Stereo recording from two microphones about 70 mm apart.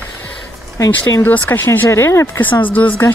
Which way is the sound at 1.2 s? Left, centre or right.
Left.